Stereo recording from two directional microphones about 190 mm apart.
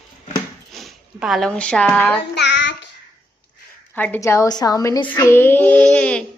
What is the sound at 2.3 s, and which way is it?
Child singing, 65° left (ahead or behind).